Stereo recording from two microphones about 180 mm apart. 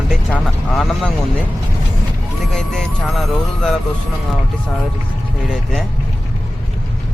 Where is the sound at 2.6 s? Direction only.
5° left (ahead or behind).